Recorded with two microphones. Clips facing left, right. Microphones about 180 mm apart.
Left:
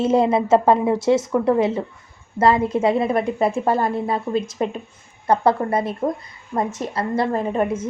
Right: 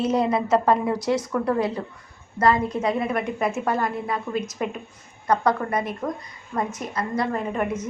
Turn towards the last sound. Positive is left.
turn(degrees=30)  # may be behind; listen again after turning